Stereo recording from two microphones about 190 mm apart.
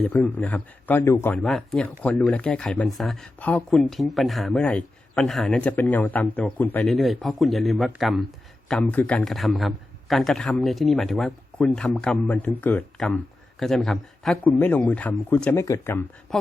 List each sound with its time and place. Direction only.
0.0 s a man's voice: 10° left (ahead or behind)
8.7 s a man's voice: 10° left (ahead or behind)
16.3 s speech: centre (ahead or behind)